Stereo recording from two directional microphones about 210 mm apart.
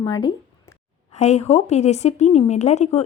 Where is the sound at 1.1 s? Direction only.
30° left (ahead or behind).